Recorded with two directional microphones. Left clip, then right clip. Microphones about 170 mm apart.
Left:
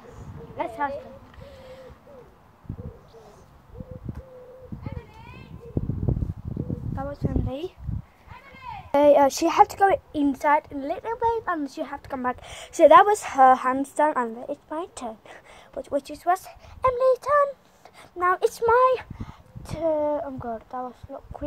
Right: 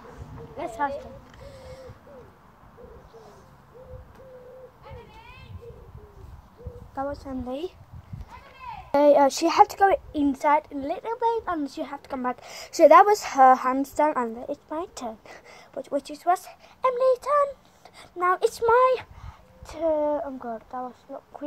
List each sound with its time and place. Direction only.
0.6 s a sound: 50° right (ahead or behind)
1.4 s owl: 55° right (ahead or behind)
7.0 s speech: 55° right (ahead or behind)
8.9 s a woman's voice: centre (ahead or behind)
19.1 s speech: 5° left (ahead or behind)